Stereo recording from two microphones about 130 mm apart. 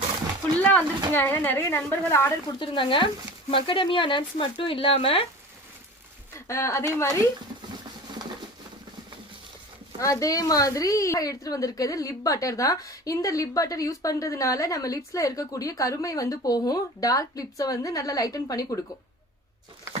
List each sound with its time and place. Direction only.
0.6 s a woman's voice: 15° left (ahead or behind)
2.6 s speech: 40° left (ahead or behind)
6.5 s a woman's voice: 20° left (ahead or behind)
10.0 s a woman's voice: 25° left (ahead or behind)